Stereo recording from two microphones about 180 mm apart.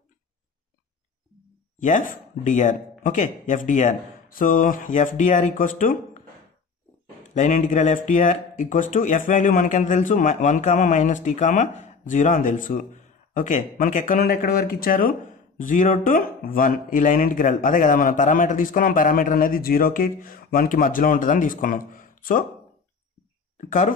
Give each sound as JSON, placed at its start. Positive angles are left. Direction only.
{"t": 1.8, "sound": "speech", "side_deg": 45}
{"t": 7.3, "sound": "speech", "side_deg": 45}